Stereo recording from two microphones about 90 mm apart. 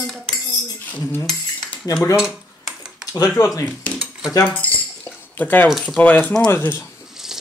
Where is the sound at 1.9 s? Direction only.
45° left (ahead or behind).